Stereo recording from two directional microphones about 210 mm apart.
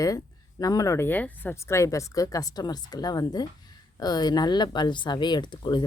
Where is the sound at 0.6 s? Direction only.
15° left (ahead or behind).